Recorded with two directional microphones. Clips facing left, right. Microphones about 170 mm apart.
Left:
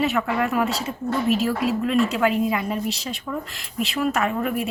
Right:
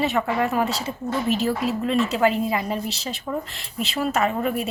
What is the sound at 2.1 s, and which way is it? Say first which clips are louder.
Speech: even; 35° right (ahead or behind).